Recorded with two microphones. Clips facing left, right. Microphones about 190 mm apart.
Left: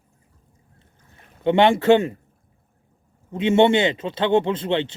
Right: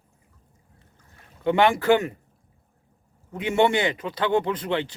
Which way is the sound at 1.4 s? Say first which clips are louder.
Left 3 dB; 25° left (ahead or behind).